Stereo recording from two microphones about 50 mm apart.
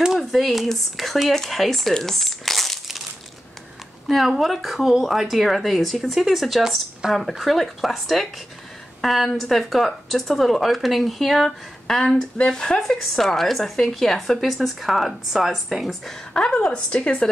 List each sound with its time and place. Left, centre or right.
0.2 s speech: centre
4.1 s speech: centre
12.4 s speech: centre
16.3 s a woman's voice: left